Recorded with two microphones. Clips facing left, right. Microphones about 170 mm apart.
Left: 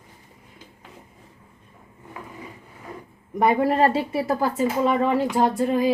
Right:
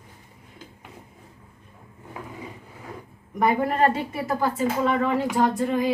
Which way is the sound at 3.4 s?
30° left (ahead or behind).